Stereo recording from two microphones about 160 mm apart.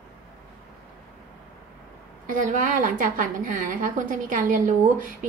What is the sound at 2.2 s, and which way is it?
A woman's voice, 55° right (ahead or behind).